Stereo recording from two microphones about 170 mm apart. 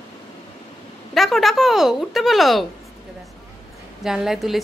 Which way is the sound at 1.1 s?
Centre (ahead or behind).